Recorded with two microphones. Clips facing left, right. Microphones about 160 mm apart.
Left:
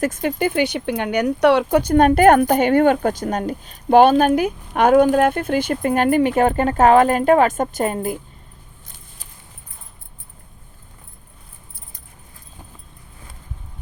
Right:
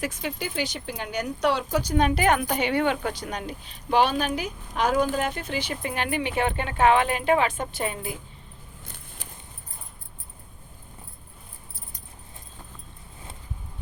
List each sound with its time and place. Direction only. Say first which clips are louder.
0.0 s speech: left 10 dB; 50° left (ahead or behind)